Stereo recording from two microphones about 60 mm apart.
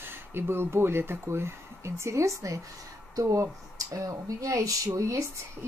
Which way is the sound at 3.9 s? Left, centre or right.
Right.